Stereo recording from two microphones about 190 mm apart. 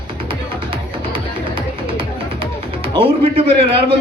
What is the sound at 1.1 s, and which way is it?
Music, 30° right (ahead or behind).